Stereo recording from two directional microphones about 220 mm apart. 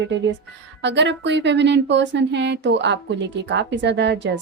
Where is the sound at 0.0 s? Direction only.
55° right (ahead or behind).